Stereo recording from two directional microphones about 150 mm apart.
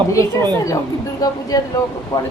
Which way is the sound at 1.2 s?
25° left (ahead or behind).